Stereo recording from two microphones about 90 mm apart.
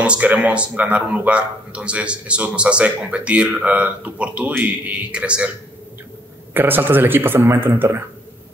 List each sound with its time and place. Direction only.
0.0 s a man's voice: 15° right (ahead or behind)
6.5 s speech: 20° right (ahead or behind)